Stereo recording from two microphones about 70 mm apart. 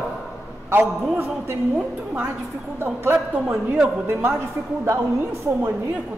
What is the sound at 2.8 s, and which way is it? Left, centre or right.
A woman's voice, right.